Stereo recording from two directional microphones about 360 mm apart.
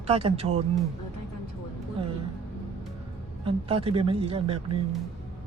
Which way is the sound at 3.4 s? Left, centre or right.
Centre.